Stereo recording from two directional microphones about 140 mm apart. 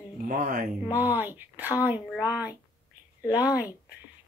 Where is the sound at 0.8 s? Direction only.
15° right (ahead or behind).